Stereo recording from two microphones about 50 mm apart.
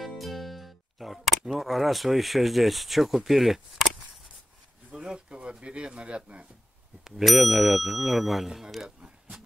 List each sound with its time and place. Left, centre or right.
0.0 s music: centre
1.6 s speech: centre
4.9 s speech: centre
7.1 s speech: centre